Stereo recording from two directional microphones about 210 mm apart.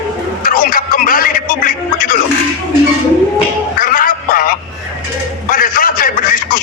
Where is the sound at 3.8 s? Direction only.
40° left (ahead or behind).